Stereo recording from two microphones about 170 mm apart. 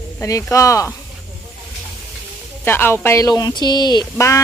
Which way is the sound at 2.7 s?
15° left (ahead or behind).